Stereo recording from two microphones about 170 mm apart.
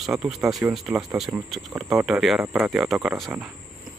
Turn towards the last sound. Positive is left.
turn(degrees=0)  # may be behind; listen again after turning